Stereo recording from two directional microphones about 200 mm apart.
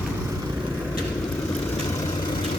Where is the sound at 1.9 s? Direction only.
15° left (ahead or behind).